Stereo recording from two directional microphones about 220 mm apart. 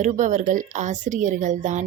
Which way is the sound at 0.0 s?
35° right (ahead or behind).